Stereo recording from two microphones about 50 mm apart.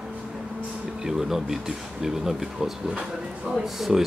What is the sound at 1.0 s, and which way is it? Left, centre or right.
Speech, centre.